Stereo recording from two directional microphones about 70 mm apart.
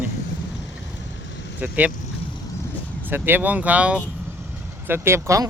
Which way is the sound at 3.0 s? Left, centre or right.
Right.